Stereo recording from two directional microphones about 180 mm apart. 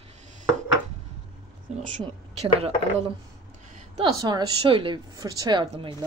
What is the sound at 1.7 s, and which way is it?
Speech, 40° right (ahead or behind).